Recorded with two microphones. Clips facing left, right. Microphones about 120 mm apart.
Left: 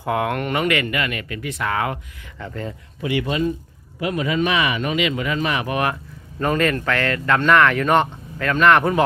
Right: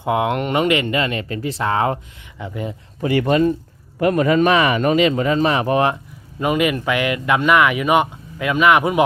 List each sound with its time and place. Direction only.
0.0 s speech: 20° right (ahead or behind)
2.4 s speech: 15° right (ahead or behind)
3.0 s speech: 45° right (ahead or behind)
6.4 s speech: 10° right (ahead or behind)